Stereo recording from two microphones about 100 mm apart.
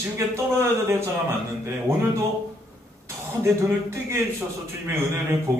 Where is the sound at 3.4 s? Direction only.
25° right (ahead or behind).